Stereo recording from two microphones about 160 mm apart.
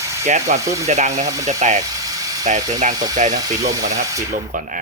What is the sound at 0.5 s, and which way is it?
Speech, 45° right (ahead or behind).